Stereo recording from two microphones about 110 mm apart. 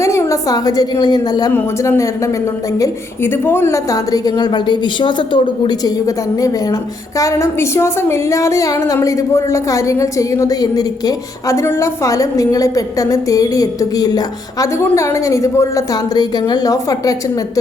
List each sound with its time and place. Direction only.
0.0 s a woman's voice: 25° left (ahead or behind)
1.5 s a woman's voice: 25° left (ahead or behind)